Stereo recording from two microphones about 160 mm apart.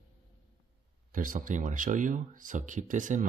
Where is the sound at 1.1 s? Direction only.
55° right (ahead or behind).